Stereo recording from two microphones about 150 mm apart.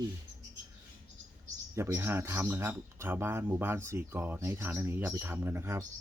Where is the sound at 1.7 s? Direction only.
15° right (ahead or behind).